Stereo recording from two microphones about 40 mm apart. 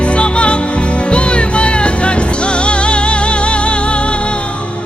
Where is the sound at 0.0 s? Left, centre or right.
Left.